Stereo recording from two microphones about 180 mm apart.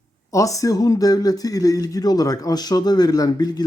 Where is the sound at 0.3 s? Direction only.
20° left (ahead or behind).